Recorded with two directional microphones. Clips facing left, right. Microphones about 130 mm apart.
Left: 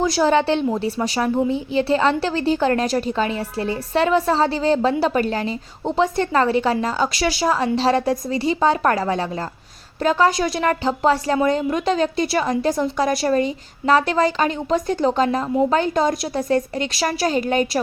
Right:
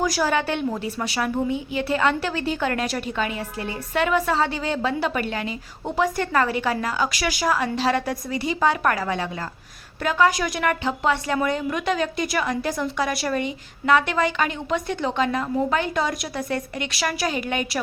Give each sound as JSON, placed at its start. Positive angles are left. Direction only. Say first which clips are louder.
{"t": 0.0, "sound": "a woman's voice", "louder": "left 5 dB", "side_deg": 25}